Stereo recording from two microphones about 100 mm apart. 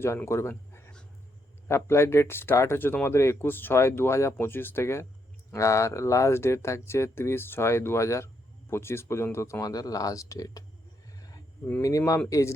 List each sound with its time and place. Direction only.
0.3 s speech: 25° left (ahead or behind)
11.8 s speech: 35° left (ahead or behind)